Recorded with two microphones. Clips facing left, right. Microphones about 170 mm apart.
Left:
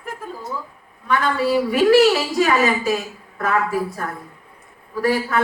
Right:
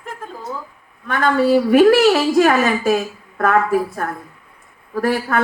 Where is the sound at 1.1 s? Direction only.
50° right (ahead or behind).